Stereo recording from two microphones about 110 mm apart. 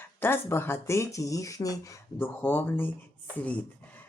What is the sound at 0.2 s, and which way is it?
Speech, 20° left (ahead or behind).